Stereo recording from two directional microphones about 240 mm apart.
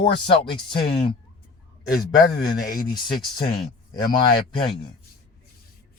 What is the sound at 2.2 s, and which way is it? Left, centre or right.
Speech, centre.